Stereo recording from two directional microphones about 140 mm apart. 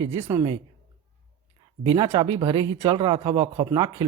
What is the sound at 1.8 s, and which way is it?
Speech, 35° right (ahead or behind).